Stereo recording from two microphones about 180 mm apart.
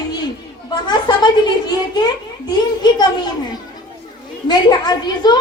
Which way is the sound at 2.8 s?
25° left (ahead or behind).